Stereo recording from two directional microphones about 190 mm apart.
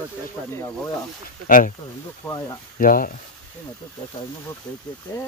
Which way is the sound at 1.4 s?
45° left (ahead or behind).